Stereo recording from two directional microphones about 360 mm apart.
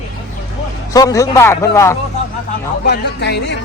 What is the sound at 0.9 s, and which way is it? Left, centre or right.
Speech, centre.